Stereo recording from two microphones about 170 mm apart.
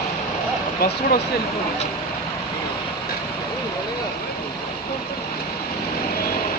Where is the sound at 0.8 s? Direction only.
60° left (ahead or behind).